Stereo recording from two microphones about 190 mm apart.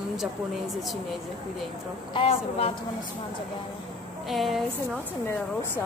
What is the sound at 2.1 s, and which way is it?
Speech, 30° left (ahead or behind).